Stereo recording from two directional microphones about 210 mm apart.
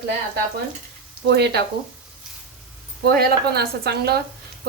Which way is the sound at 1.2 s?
50° right (ahead or behind).